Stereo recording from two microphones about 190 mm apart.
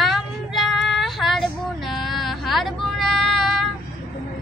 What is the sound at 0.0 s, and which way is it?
Child singing, centre (ahead or behind).